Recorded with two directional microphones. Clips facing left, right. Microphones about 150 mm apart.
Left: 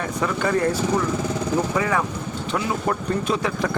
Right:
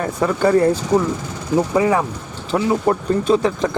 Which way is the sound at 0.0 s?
30° right (ahead or behind).